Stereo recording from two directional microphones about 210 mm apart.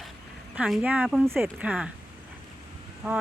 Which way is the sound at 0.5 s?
5° right (ahead or behind).